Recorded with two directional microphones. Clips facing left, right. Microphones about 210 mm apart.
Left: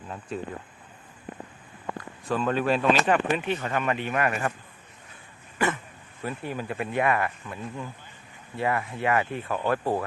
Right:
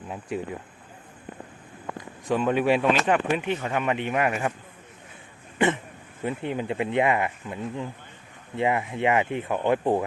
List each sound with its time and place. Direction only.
0.1 s speech: 10° right (ahead or behind)
2.0 s speech: 15° right (ahead or behind)
5.5 s a sound: 25° right (ahead or behind)
6.2 s speech: 20° right (ahead or behind)